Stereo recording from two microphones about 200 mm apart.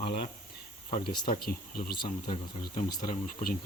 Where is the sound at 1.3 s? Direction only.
45° left (ahead or behind).